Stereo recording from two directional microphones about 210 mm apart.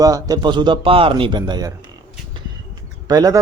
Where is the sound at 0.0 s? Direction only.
15° right (ahead or behind).